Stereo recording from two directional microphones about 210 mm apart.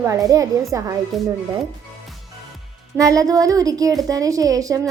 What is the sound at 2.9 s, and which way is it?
A child's voice, 15° right (ahead or behind).